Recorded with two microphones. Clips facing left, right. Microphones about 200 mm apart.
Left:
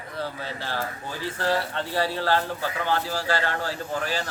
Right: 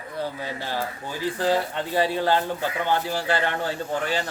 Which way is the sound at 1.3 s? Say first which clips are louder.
Right 2 dB; 15° right (ahead or behind).